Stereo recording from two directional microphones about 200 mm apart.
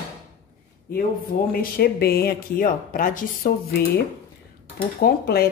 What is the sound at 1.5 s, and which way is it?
Speech, 50° left (ahead or behind).